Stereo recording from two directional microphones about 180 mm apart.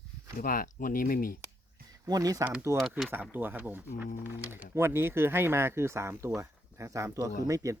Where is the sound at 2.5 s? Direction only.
5° right (ahead or behind).